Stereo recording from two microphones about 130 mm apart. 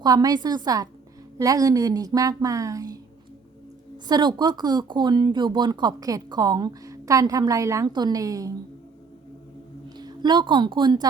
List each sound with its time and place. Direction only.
0.0 s a woman's voice: 30° right (ahead or behind)
10.0 s a woman's voice: 35° right (ahead or behind)